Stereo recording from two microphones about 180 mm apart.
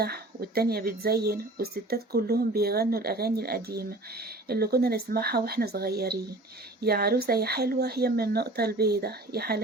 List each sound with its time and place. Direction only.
0.0 s speech: 60° right (ahead or behind)